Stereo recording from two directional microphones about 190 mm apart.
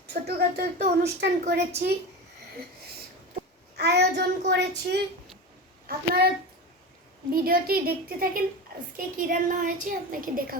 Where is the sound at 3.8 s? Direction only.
60° right (ahead or behind).